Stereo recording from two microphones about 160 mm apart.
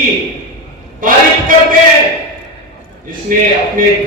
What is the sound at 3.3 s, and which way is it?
Speech, 60° right (ahead or behind).